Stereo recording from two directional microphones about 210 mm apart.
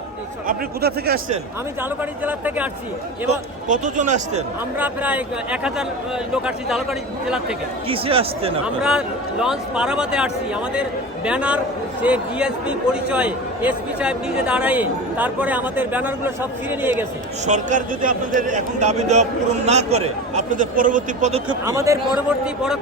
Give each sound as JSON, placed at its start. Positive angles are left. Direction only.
{"t": 0.4, "sound": "speech", "side_deg": -45}
{"t": 1.8, "sound": "a man's voice", "side_deg": -10}
{"t": 3.2, "sound": "a man's voice", "side_deg": -35}
{"t": 4.8, "sound": "a man's voice", "side_deg": -5}
{"t": 7.9, "sound": "speech", "side_deg": -25}
{"t": 8.6, "sound": "a man's voice", "side_deg": -5}
{"t": 17.4, "sound": "a man's voice", "side_deg": -35}
{"t": 21.5, "sound": "a man's voice", "side_deg": -15}